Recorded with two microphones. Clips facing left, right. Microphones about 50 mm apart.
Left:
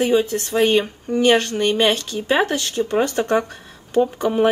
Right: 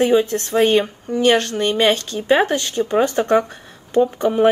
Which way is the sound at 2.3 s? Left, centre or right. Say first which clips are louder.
Right 2 dB; centre.